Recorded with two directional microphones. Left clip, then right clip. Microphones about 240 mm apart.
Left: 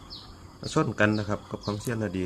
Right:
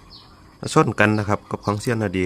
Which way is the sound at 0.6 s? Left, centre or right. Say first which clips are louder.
Right 8 dB; right.